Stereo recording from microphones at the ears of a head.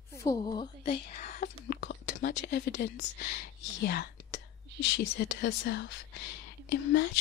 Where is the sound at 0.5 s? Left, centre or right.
Left.